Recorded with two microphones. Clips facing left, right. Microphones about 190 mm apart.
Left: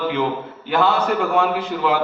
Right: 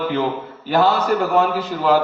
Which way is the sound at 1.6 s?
40° right (ahead or behind).